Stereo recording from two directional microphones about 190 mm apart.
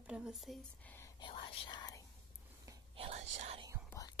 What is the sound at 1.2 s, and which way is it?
Whispering, 25° left (ahead or behind).